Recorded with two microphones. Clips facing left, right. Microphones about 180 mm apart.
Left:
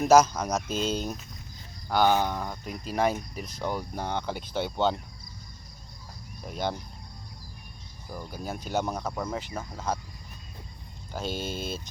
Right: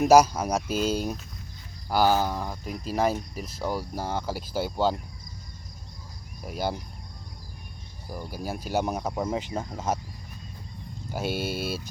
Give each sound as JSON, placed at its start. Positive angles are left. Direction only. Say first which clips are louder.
{"t": 0.1, "sound": "speech", "louder": "even", "side_deg": -10}
{"t": 6.4, "sound": "speech", "louder": "right 1 dB", "side_deg": -5}
{"t": 8.1, "sound": "speech", "louder": "right 2 dB", "side_deg": -10}
{"t": 11.1, "sound": "speech", "louder": "right 3 dB", "side_deg": -10}